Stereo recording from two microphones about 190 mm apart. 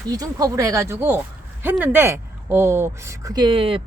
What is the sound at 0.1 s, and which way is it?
Speech, 20° right (ahead or behind).